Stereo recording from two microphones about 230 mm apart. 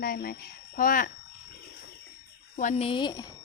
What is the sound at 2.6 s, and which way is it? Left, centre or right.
Speech, left.